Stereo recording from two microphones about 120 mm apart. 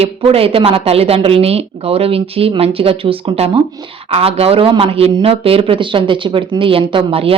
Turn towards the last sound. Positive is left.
turn(degrees=-50)  # may be behind; listen again after turning